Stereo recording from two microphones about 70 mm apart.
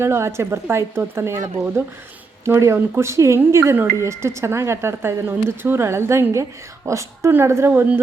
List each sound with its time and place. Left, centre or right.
0.0 s speech: right
5.3 s a woman's voice: right